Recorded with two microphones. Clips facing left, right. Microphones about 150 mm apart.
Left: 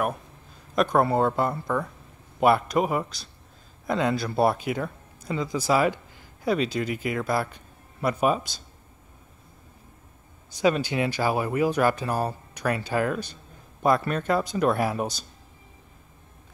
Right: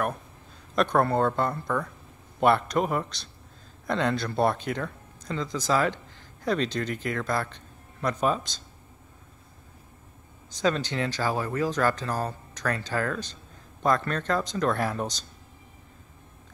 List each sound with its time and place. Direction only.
0.7 s speech: 5° left (ahead or behind)
10.6 s speech: 10° left (ahead or behind)